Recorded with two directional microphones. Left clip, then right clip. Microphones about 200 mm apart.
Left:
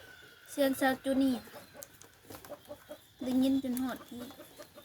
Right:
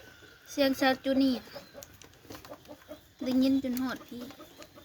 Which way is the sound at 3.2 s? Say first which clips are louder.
Right 3 dB; 15° right (ahead or behind).